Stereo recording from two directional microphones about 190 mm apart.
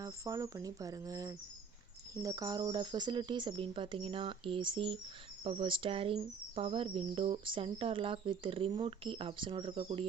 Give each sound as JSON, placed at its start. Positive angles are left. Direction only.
{"t": 0.0, "sound": "speech", "side_deg": -15}